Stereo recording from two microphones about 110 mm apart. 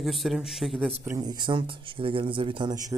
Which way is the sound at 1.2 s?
40° right (ahead or behind).